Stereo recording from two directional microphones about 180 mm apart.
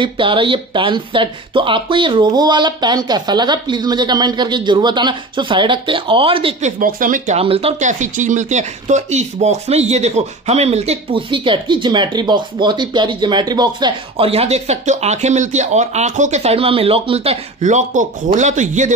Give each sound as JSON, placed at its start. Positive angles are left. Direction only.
{"t": 0.0, "sound": "speech", "side_deg": -30}
{"t": 6.8, "sound": "speech", "side_deg": -50}
{"t": 7.4, "sound": "speech", "side_deg": -35}